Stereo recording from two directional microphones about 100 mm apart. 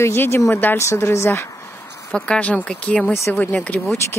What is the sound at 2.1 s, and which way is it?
Speech, 10° left (ahead or behind).